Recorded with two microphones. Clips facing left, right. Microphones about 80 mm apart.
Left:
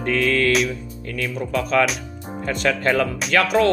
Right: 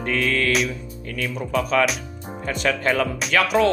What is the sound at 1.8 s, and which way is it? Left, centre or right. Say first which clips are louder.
Music: left 1 dB; centre.